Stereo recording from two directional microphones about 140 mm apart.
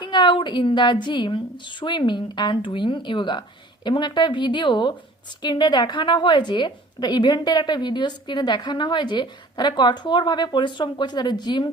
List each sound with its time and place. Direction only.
0.0 s a woman's voice: 35° left (ahead or behind)